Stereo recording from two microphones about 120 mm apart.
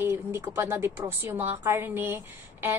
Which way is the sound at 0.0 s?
20° right (ahead or behind).